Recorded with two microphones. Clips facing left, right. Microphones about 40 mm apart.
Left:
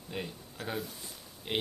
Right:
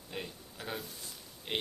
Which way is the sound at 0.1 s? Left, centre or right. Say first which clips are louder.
Left 3 dB; centre.